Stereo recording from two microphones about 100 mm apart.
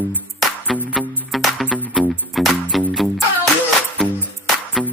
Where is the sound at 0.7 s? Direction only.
Centre (ahead or behind).